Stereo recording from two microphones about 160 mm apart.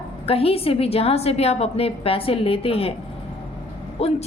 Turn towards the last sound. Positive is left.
turn(degrees=40)  # may be behind; listen again after turning